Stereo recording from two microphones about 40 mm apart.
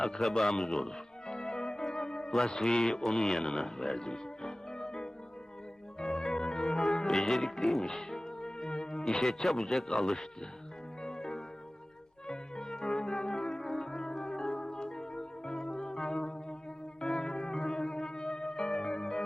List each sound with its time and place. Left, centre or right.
0.4 s a man's voice: centre
0.7 s music: centre
2.9 s a man's voice: centre
3.2 s a man's voice: centre
3.8 s music: centre
7.6 s speech: centre
11.0 s music: centre